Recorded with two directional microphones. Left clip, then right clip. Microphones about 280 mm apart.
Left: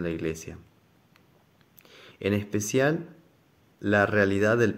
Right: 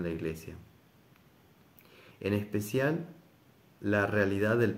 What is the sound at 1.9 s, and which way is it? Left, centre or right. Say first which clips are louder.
Speech: left 5 dB; left.